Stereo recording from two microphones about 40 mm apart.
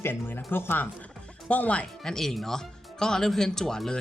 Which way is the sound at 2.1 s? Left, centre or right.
Centre.